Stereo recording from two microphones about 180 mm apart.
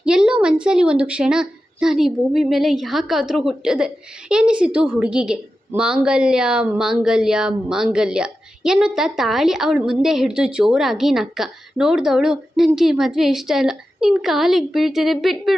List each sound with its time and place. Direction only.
0.0 s a woman's voice: 5° right (ahead or behind)